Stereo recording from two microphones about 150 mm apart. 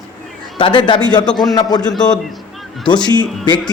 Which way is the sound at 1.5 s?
25° left (ahead or behind).